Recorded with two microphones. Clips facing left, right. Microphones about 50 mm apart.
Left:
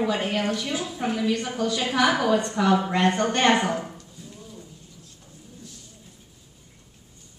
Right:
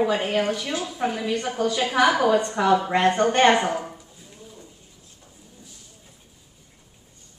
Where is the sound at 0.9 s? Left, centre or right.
Centre.